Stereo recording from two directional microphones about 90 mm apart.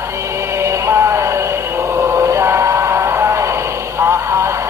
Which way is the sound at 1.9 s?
35° right (ahead or behind).